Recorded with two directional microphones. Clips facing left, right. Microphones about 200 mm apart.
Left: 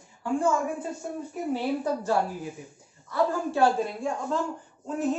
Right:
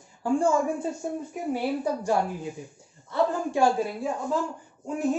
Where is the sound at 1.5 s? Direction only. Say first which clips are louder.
Even; 10° right (ahead or behind).